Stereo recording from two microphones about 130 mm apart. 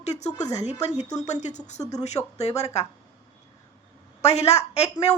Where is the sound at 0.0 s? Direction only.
60° left (ahead or behind).